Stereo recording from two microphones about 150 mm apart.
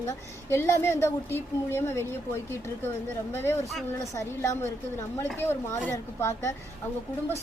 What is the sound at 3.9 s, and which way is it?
A woman's voice, 20° left (ahead or behind).